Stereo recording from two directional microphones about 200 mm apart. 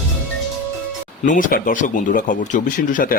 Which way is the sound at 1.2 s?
40° left (ahead or behind).